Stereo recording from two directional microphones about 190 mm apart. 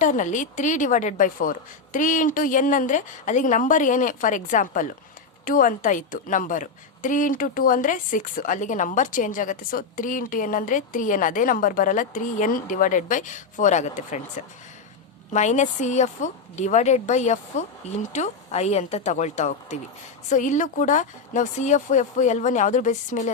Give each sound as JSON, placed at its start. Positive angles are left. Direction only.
{"t": 0.0, "sound": "a woman's voice", "side_deg": 40}